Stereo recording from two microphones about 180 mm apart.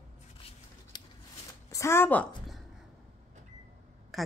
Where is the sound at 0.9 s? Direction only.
25° left (ahead or behind); by 2.6 s 5° left (ahead or behind).